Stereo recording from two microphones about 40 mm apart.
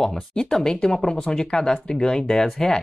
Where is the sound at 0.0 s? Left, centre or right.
Centre.